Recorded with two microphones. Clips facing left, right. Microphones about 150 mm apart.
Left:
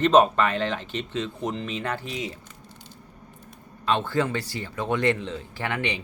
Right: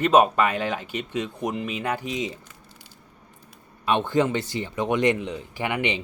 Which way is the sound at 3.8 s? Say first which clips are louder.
Right 2 dB; 20° right (ahead or behind).